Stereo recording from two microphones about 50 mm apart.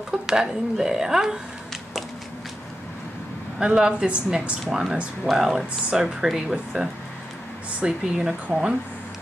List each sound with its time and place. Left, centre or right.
0.3 s speech: centre
3.5 s speech: centre
7.8 s speech: centre